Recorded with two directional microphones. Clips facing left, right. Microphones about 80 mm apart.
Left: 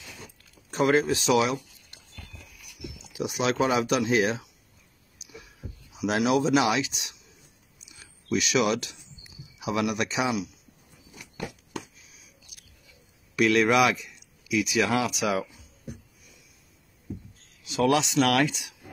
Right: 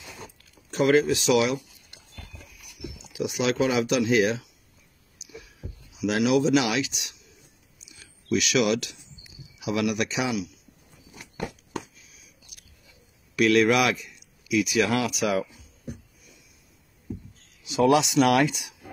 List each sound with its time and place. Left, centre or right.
0.7 s speech: left
3.1 s speech: left
5.9 s speech: left
8.4 s speech: left
11.1 s a sound: right
13.4 s speech: centre
17.6 s speech: centre